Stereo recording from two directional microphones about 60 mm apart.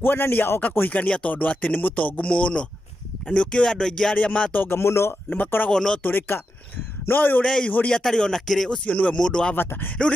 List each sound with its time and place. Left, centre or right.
0.0 s speech: left; by 4.2 s centre
4.2 s speech: left
4.6 s speech: left
5.3 s speech: left
5.7 s speech: centre
6.0 s a man's voice: left
7.4 s speech: centre
8.7 s speech: left
9.6 s a man's voice: left